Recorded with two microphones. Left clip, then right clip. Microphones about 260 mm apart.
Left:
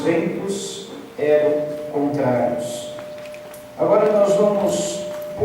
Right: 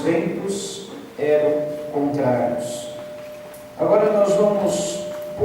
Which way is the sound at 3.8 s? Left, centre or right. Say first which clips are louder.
Left 1 dB; centre.